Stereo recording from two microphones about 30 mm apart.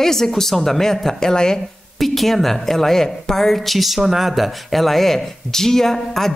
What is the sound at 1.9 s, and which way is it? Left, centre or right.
A woman's voice, centre.